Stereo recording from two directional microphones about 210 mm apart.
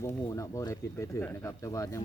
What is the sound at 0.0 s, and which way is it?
Speech, 15° left (ahead or behind).